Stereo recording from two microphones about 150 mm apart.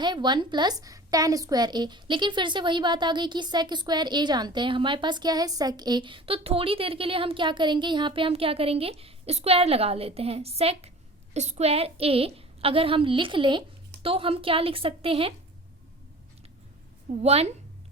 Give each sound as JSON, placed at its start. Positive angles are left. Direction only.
{"t": 0.0, "sound": "a woman's voice", "side_deg": -30}
{"t": 17.1, "sound": "a woman's voice", "side_deg": -45}